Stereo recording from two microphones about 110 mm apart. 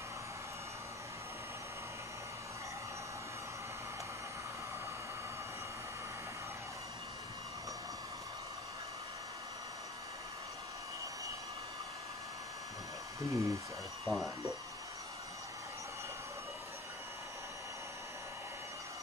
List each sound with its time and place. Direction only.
13.2 s speech: 30° right (ahead or behind)
14.0 s speech: centre (ahead or behind)